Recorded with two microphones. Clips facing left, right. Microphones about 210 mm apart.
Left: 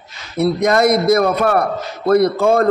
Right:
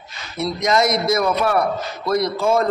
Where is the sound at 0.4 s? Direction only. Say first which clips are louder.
Left 5 dB; 60° left (ahead or behind).